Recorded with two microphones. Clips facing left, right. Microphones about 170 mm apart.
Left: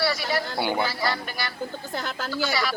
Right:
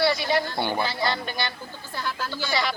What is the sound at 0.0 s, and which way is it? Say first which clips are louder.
A man's voice: right 3 dB; 20° right (ahead or behind).